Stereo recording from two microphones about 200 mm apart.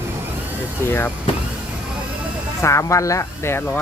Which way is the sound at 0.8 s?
10° left (ahead or behind).